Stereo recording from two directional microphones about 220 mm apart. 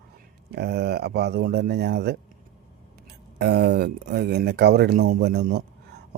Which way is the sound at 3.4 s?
50° right (ahead or behind).